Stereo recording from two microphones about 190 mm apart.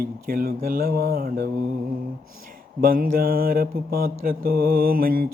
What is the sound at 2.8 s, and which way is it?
Mantra, 50° right (ahead or behind).